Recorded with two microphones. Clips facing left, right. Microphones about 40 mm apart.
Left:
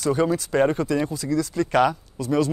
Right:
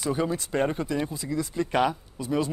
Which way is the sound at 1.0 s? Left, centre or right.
Centre.